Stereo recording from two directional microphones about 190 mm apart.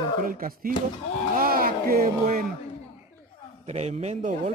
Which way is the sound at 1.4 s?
50° right (ahead or behind).